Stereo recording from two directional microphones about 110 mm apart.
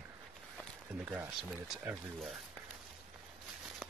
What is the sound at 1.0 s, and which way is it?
Speech, 15° right (ahead or behind).